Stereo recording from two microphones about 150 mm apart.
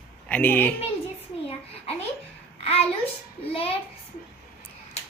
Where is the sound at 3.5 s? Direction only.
40° left (ahead or behind).